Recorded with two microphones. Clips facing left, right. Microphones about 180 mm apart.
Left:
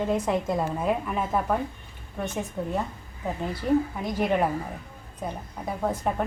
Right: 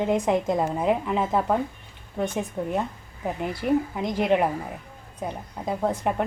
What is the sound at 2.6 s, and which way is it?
A woman's voice, 20° right (ahead or behind).